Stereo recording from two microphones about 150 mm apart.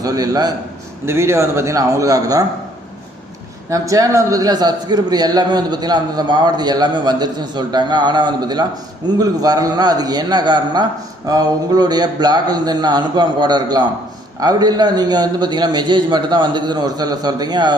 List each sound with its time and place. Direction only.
0.0 s a man's voice: 25° right (ahead or behind)
3.7 s a man's voice: 25° right (ahead or behind)